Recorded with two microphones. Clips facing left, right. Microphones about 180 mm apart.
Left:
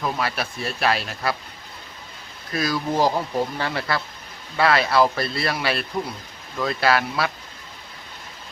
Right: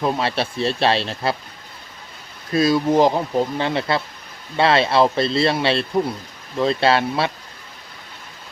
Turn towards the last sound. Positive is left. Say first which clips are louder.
# right 3 dB
turn(degrees=-25)  # may be behind; listen again after turning